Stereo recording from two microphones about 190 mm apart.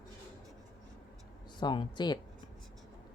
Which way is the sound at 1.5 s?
25° left (ahead or behind).